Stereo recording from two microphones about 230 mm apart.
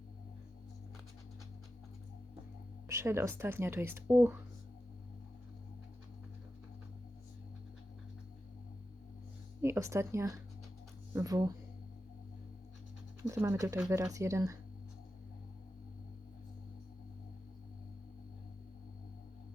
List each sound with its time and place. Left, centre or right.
2.9 s speech: centre
9.6 s speech: centre
13.2 s speech: centre